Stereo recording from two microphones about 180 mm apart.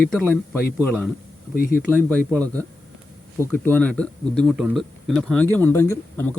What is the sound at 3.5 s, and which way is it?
Speech, 10° left (ahead or behind).